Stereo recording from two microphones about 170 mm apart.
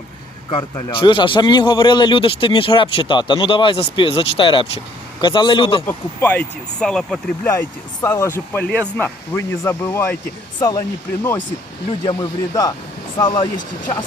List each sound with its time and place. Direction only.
0.5 s a man's voice: 30° left (ahead or behind)
5.8 s speech: 10° left (ahead or behind)
8.0 s a man's voice: 15° left (ahead or behind)